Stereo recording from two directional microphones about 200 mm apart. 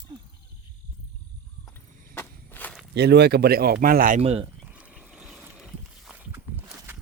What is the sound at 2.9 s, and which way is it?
Speech, 55° right (ahead or behind).